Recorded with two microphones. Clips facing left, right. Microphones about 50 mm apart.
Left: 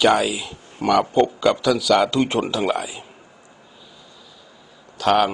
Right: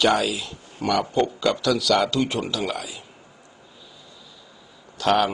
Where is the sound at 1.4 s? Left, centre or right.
Centre.